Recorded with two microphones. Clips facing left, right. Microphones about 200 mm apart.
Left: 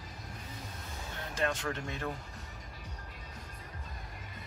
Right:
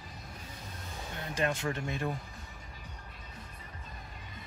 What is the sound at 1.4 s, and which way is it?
Speech, 15° right (ahead or behind).